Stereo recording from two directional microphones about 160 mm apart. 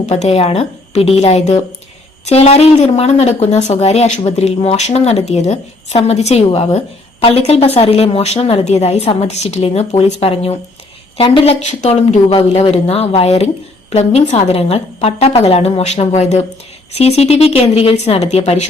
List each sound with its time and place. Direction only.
0.0 s speech: 40° left (ahead or behind)